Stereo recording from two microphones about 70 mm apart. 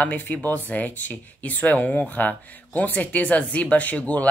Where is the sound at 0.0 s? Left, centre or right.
Left.